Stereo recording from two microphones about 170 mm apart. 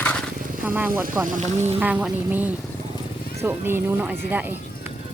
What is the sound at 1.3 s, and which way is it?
Speech, 45° right (ahead or behind).